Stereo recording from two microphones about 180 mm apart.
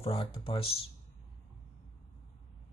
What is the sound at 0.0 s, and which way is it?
Speech, 30° left (ahead or behind).